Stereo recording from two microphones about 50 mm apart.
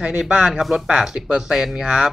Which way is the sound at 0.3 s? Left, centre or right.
Centre.